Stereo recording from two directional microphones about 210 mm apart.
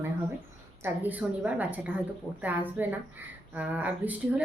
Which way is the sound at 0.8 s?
10° right (ahead or behind).